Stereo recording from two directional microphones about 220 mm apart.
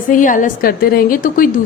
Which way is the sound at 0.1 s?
35° left (ahead or behind).